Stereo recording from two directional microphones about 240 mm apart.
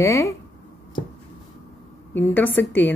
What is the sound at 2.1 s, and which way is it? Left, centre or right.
Speech, centre.